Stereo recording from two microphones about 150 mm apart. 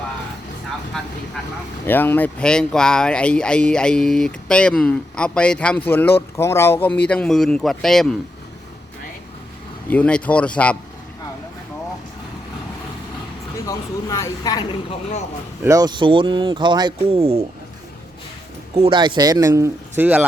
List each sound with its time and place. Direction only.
0.9 s speech: 5° left (ahead or behind)
9.9 s speech: 10° left (ahead or behind)
13.7 s speech: 20° left (ahead or behind)
15.6 s speech: 25° right (ahead or behind)
17.2 s speech: 45° right (ahead or behind)
18.8 s speech: 30° right (ahead or behind); by 20.2 s 10° right (ahead or behind)